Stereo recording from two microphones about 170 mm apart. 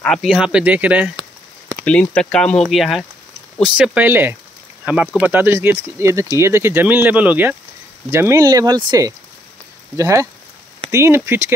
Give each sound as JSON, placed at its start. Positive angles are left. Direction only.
{"t": 0.0, "sound": "speech", "side_deg": 0}
{"t": 1.9, "sound": "speech", "side_deg": 5}